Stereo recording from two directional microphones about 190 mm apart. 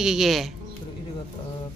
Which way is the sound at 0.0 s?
Centre (ahead or behind).